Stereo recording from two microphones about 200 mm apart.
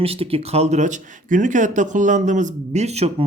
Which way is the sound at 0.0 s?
30° right (ahead or behind).